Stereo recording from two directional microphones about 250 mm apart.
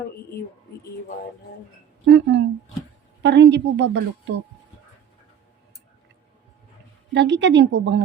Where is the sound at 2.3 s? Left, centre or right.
Right.